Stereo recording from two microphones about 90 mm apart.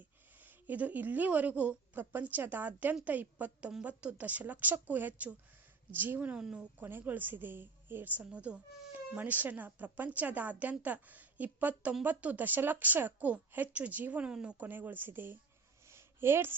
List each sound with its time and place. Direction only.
0.3 s a woman's voice: 20° right (ahead or behind)
6.8 s a woman's voice: 20° right (ahead or behind)
15.9 s a sound: 30° right (ahead or behind)